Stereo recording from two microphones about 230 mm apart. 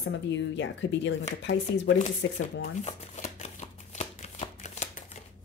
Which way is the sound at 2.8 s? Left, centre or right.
Left.